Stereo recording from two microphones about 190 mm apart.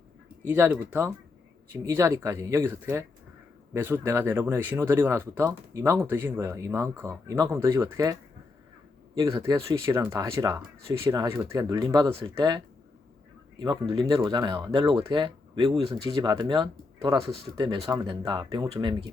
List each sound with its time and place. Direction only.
0.4 s speech: 10° right (ahead or behind)
9.1 s speech: 15° right (ahead or behind)